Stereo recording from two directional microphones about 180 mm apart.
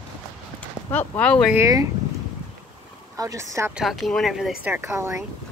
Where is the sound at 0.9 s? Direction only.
10° left (ahead or behind).